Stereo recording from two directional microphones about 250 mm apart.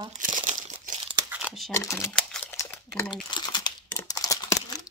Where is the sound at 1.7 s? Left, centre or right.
Centre.